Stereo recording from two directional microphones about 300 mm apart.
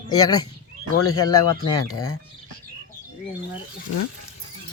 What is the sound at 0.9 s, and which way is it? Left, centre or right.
Speech, left.